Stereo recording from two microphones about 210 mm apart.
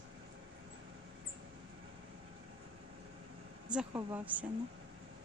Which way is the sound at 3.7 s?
10° right (ahead or behind).